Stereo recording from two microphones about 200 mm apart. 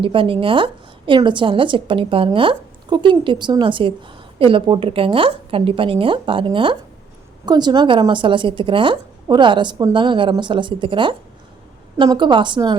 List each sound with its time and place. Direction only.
0.0 s a woman's voice: 25° right (ahead or behind)